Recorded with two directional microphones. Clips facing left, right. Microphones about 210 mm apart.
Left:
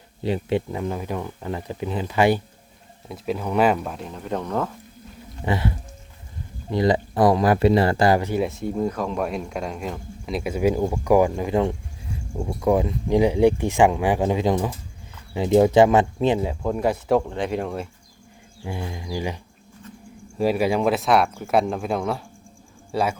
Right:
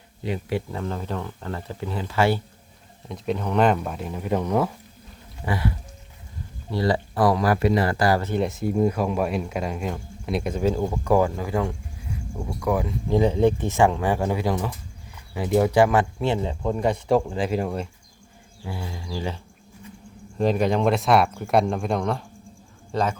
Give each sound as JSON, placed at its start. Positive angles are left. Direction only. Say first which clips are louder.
{"t": 0.2, "sound": "speech", "louder": "left 4 dB", "side_deg": 30}
{"t": 0.7, "sound": "speech", "louder": "left 2 dB", "side_deg": 15}
{"t": 3.1, "sound": "speech", "louder": "even", "side_deg": 5}
{"t": 5.5, "sound": "speech", "louder": "left 2 dB", "side_deg": 25}
{"t": 8.3, "sound": "speech", "louder": "even", "side_deg": 0}
{"t": 18.6, "sound": "speech", "louder": "left 3 dB", "side_deg": 20}
{"t": 20.4, "sound": "speech", "louder": "left 1 dB", "side_deg": 5}